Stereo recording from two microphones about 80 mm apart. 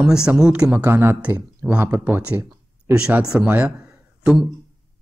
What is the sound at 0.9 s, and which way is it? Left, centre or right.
Speech, right.